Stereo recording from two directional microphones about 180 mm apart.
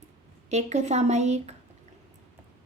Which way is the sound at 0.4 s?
40° right (ahead or behind).